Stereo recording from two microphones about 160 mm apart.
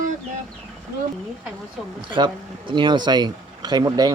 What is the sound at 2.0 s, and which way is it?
Speech, 30° right (ahead or behind).